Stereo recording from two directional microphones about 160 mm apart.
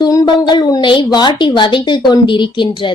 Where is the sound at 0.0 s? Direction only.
25° left (ahead or behind).